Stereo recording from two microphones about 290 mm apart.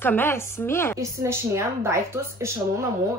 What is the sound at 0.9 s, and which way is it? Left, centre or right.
Speech, centre.